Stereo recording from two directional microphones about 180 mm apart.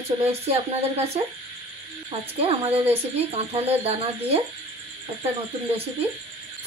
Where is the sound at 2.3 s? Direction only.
35° right (ahead or behind).